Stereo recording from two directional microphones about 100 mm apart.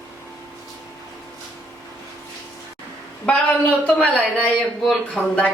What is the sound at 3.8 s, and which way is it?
A woman's voice, 10° left (ahead or behind).